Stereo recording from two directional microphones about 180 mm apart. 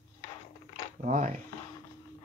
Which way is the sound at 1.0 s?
45° right (ahead or behind).